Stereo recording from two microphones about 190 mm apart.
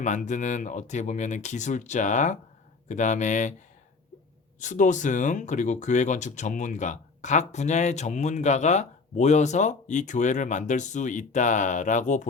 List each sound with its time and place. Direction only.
0.0 s speech: 40° left (ahead or behind)
4.6 s speech: 40° left (ahead or behind)